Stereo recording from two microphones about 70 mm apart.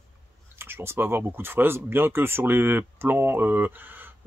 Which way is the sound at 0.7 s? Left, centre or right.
Right.